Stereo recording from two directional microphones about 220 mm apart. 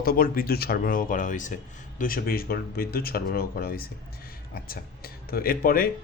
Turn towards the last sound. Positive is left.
turn(degrees=40)  # may be behind; listen again after turning